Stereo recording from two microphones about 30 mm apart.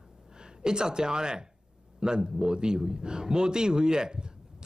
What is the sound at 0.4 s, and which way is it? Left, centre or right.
A man's voice, right.